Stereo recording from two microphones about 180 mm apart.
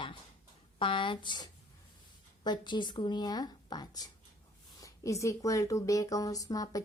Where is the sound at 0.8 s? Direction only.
30° left (ahead or behind).